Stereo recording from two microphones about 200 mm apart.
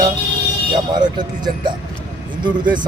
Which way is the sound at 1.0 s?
20° right (ahead or behind).